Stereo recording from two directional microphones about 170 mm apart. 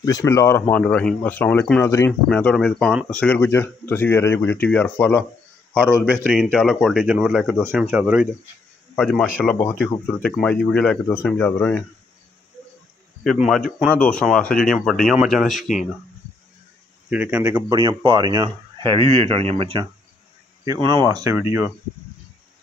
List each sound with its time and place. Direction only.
0.0 s speech: 20° left (ahead or behind)
2.2 s speech: 5° left (ahead or behind)
6.2 s speech: centre (ahead or behind)
8.9 s speech: 5° left (ahead or behind)
13.2 s speech: centre (ahead or behind)
17.1 s speech: 10° right (ahead or behind)
17.6 s speech: 25° right (ahead or behind)